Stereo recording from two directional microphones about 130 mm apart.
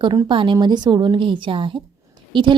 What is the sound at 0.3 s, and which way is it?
A woman's voice, 40° right (ahead or behind).